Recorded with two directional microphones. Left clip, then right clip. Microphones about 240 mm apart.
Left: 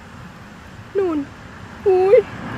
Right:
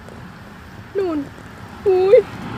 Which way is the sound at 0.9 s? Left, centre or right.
Centre.